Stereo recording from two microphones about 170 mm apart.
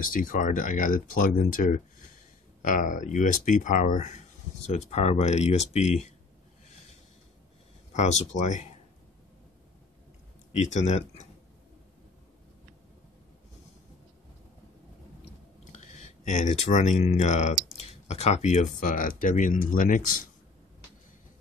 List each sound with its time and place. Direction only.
0.0 s speech: 55° left (ahead or behind)
7.9 s speech: 40° left (ahead or behind)
10.5 s speech: 45° left (ahead or behind)
15.7 s speech: 45° left (ahead or behind)